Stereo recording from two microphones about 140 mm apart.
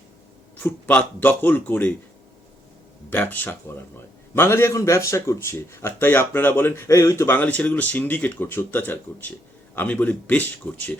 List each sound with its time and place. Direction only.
0.5 s speech: 10° left (ahead or behind)
3.1 s speech: 15° left (ahead or behind)